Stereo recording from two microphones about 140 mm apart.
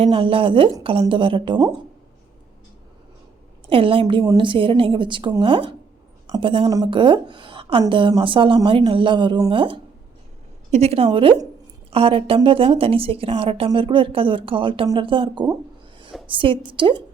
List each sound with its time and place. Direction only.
0.0 s a woman's voice: 40° right (ahead or behind)
3.7 s a woman's voice: 40° right (ahead or behind)
6.7 s a woman's voice: 30° right (ahead or behind)
10.7 s a woman's voice: 50° right (ahead or behind)